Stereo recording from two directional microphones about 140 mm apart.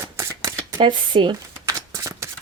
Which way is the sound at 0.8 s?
35° right (ahead or behind).